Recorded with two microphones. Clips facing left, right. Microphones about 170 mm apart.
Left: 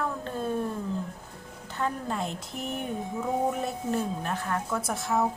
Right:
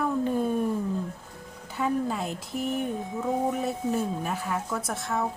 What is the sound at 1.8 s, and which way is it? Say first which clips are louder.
Speech: right 3 dB; centre (ahead or behind).